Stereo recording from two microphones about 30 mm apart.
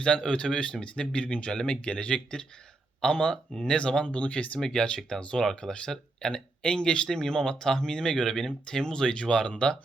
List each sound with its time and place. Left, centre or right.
0.3 s speech: left
4.0 s speech: left
4.6 s speech: left